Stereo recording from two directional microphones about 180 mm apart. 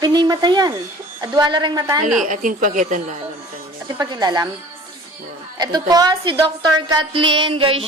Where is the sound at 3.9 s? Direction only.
25° right (ahead or behind).